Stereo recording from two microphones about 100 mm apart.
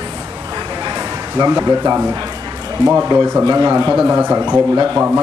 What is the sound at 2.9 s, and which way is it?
Speech, 20° right (ahead or behind).